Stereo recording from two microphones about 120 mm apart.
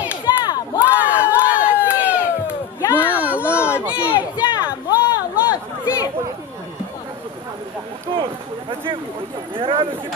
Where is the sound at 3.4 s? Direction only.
20° left (ahead or behind).